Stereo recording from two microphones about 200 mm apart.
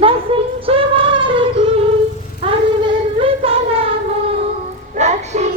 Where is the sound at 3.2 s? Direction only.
30° right (ahead or behind).